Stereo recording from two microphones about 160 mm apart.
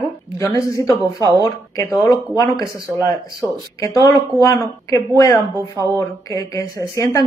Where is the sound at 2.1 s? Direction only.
25° left (ahead or behind).